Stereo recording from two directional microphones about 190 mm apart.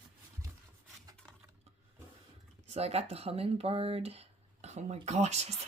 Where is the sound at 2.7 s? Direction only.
35° right (ahead or behind).